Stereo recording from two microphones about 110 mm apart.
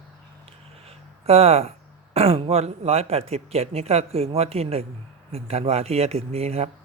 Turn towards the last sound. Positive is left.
turn(degrees=-70)  # may be behind; listen again after turning